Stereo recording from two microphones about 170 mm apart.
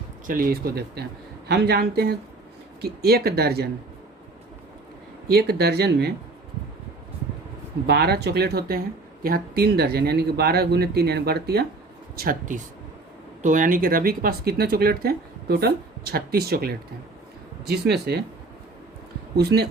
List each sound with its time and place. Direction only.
0.3 s speech: 55° right (ahead or behind)
5.3 s speech: 70° right (ahead or behind)
7.9 s speech: 70° right (ahead or behind)
12.1 s speech: 60° right (ahead or behind)
19.4 s speech: 70° right (ahead or behind)